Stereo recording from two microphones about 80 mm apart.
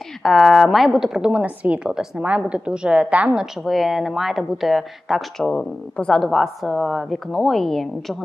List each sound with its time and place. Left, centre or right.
0.2 s a woman's voice: centre
1.3 s a woman's voice: centre
3.6 s a woman's voice: centre
5.5 s a woman's voice: centre